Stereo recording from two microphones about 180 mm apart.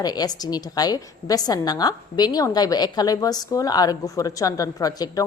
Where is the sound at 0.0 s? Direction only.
20° left (ahead or behind).